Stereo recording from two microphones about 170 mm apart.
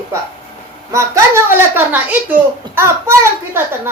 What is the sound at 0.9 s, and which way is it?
Speech, 20° right (ahead or behind).